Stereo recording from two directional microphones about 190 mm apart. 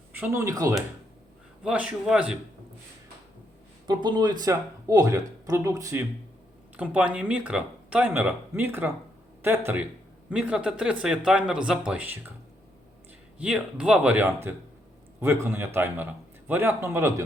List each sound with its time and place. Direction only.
0.1 s speech: 10° right (ahead or behind)
1.6 s speech: 5° right (ahead or behind)
3.8 s speech: 20° right (ahead or behind)
13.4 s speech: 5° right (ahead or behind)